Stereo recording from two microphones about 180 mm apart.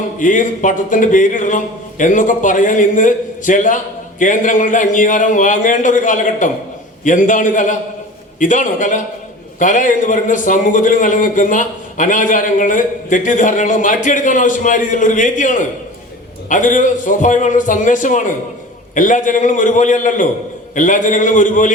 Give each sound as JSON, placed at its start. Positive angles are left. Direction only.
{"t": 0.2, "sound": "a man's voice", "side_deg": 45}